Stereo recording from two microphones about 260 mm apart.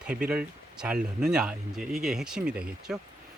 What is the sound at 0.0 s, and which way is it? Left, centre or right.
Speech, centre.